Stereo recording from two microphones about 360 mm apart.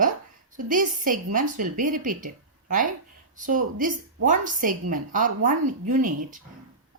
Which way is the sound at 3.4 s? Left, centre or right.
Right.